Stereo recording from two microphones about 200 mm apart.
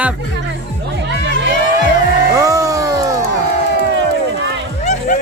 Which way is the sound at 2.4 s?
15° right (ahead or behind).